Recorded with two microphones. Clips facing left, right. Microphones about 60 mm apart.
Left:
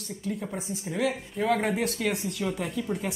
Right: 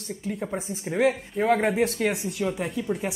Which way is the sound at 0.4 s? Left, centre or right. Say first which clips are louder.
Right 3 dB; right.